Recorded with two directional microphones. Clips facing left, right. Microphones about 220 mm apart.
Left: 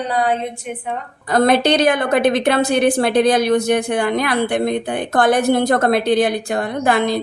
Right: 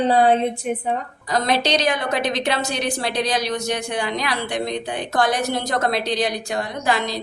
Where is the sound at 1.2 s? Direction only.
55° left (ahead or behind).